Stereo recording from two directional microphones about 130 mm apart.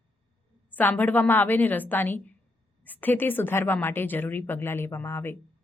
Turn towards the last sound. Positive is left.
turn(degrees=20)  # may be behind; listen again after turning